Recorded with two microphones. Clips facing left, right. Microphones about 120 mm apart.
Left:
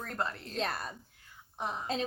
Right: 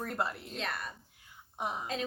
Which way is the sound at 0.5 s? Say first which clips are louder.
Left 6 dB; 35° left (ahead or behind).